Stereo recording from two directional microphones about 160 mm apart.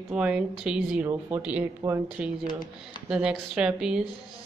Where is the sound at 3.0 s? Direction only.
5° right (ahead or behind).